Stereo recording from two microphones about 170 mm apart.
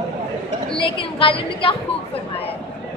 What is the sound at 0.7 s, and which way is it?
A woman's voice, 30° left (ahead or behind).